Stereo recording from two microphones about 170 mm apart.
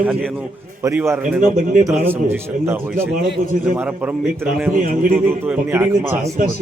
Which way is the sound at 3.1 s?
50° right (ahead or behind).